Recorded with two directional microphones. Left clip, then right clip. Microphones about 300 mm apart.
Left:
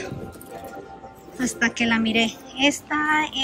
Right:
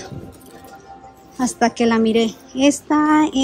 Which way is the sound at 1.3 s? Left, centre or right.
Centre.